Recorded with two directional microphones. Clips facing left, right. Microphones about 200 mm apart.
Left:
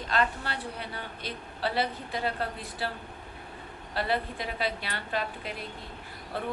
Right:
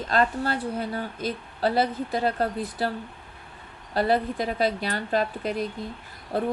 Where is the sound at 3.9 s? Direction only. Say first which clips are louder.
Right 7 dB; 40° right (ahead or behind).